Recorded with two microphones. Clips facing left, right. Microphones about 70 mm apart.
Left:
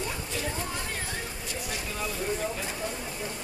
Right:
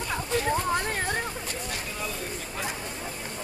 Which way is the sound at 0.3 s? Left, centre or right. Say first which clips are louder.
Right 8 dB; right.